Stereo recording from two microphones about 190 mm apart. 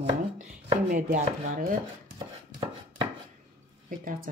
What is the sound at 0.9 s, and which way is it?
Speech, 45° right (ahead or behind).